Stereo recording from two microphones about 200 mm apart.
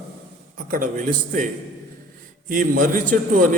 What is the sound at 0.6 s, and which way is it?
Speech, 45° right (ahead or behind).